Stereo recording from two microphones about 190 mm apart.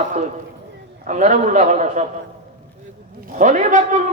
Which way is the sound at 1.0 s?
40° right (ahead or behind).